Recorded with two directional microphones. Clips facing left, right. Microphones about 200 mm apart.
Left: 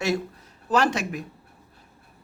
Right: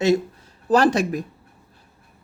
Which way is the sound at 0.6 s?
35° right (ahead or behind).